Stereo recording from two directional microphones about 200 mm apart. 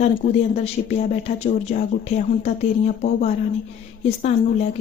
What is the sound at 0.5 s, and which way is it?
Speech, 35° left (ahead or behind).